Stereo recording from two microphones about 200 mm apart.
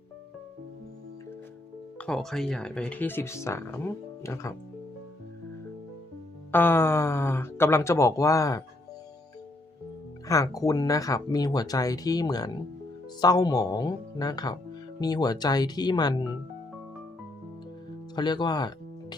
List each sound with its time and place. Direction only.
2.0 s speech: 5° left (ahead or behind)
6.5 s speech: 10° left (ahead or behind)
10.2 s speech: 15° left (ahead or behind)
18.1 s speech: 20° left (ahead or behind)